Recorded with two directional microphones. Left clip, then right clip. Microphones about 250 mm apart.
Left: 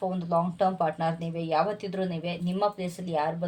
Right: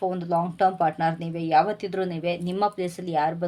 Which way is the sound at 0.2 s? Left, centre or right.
Right.